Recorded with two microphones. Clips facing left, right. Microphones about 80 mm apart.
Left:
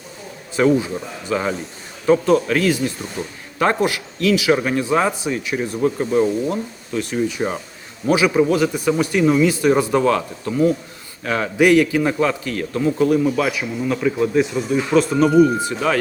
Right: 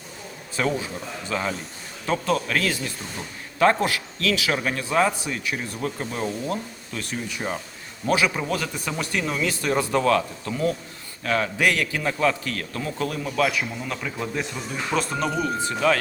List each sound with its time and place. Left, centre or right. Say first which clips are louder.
0.5 s a man's voice: left 9 dB; left